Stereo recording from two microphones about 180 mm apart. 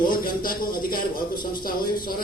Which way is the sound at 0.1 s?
55° left (ahead or behind).